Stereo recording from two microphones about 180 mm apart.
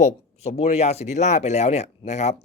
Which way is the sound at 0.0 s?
35° left (ahead or behind).